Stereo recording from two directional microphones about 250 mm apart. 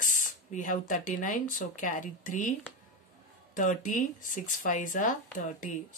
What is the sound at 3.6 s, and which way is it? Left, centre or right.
Speech, left.